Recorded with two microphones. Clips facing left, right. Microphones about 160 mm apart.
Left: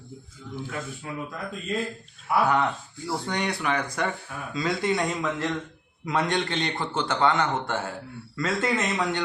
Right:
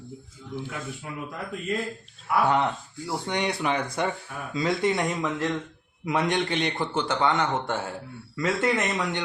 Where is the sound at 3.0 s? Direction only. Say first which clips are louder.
Even; 20° right (ahead or behind).